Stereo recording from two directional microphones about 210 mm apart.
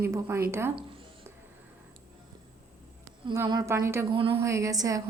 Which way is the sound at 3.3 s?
20° right (ahead or behind).